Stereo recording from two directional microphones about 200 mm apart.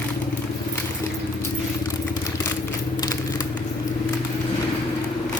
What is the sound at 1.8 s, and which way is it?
Vehicle, 15° left (ahead or behind).